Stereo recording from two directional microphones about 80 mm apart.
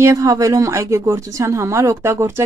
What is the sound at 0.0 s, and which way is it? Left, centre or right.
A woman's voice, right.